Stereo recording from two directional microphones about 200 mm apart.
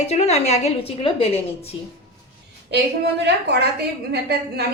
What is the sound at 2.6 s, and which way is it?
A woman's voice, 60° right (ahead or behind).